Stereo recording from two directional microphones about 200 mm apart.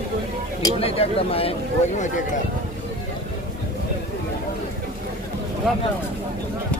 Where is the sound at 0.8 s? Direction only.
30° left (ahead or behind).